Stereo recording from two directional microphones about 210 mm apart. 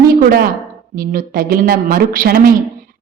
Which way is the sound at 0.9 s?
45° right (ahead or behind).